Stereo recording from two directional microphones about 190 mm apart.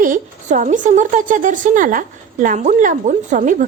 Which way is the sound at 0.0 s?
45° right (ahead or behind).